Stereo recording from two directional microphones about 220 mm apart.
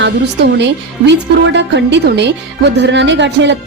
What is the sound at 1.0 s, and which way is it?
A woman's voice, 50° right (ahead or behind).